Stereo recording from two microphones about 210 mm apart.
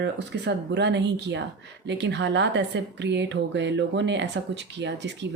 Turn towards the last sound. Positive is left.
turn(degrees=-55)  # may be behind; listen again after turning